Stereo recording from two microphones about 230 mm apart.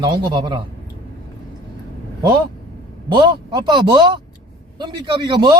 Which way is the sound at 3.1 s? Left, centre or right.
Centre.